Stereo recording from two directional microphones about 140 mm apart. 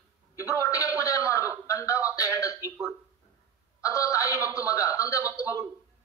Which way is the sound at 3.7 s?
20° left (ahead or behind).